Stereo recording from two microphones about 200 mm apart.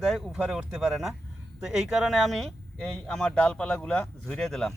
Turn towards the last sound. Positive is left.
turn(degrees=0)  # may be behind; listen again after turning